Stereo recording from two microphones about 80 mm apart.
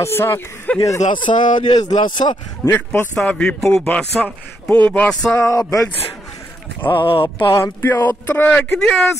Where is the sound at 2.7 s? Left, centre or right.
Left.